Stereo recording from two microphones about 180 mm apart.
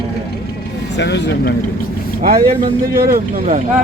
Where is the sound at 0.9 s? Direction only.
75° left (ahead or behind).